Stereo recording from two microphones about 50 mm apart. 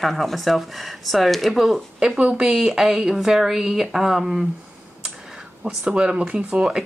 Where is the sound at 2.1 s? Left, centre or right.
Right.